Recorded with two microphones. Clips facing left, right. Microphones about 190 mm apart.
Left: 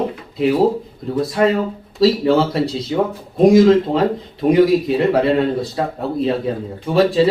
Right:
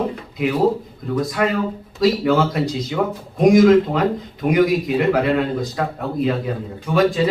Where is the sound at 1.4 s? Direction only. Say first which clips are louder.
Left 4 dB; 25° left (ahead or behind).